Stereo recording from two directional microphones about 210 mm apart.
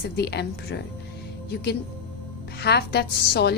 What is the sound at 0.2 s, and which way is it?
Speech, 50° left (ahead or behind).